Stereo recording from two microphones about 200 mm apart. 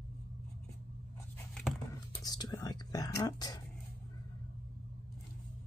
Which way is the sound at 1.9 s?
20° left (ahead or behind).